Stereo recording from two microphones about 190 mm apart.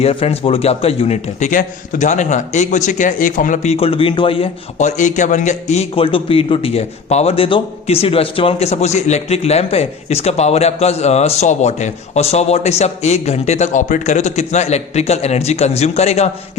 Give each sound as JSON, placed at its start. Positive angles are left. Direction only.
{"t": 0.0, "sound": "a man's voice", "side_deg": 30}